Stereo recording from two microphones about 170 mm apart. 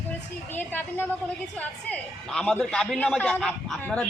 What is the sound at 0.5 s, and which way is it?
A woman's voice, 10° left (ahead or behind).